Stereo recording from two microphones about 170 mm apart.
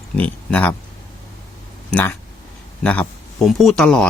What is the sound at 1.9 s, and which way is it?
Speech, 10° left (ahead or behind).